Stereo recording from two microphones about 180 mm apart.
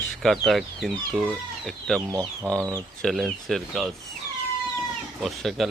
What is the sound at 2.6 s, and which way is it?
Speech, 20° right (ahead or behind).